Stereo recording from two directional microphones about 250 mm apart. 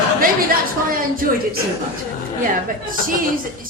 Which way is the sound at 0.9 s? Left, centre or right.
Right.